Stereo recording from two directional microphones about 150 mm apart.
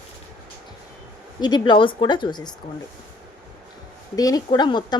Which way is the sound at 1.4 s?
30° left (ahead or behind).